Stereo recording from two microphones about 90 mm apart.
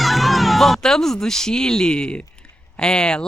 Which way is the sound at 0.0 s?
Centre (ahead or behind).